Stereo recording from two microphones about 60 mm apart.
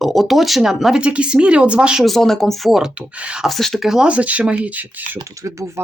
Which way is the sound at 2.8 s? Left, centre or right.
Centre.